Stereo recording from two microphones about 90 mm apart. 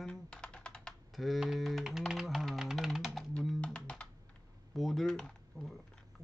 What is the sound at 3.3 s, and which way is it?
Typing, 10° left (ahead or behind).